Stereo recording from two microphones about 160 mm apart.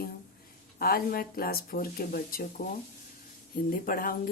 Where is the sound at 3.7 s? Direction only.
60° left (ahead or behind).